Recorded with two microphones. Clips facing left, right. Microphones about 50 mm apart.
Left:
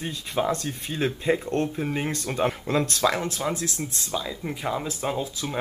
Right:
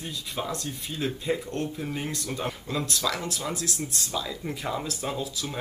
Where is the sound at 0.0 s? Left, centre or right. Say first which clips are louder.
Left 6 dB; left.